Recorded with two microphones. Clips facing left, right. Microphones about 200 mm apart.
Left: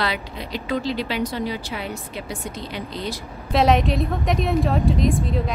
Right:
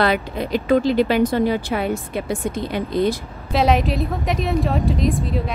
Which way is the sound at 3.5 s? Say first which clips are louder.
Even; centre (ahead or behind).